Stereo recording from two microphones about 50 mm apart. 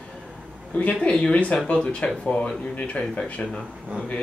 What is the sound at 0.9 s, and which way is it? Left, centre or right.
Speech, centre.